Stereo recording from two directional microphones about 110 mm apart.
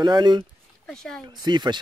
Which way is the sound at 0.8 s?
5° left (ahead or behind).